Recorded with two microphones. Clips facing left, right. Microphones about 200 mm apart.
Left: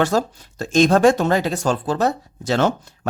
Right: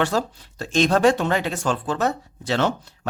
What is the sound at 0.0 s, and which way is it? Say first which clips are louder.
Speech: left 3 dB; 45° left (ahead or behind).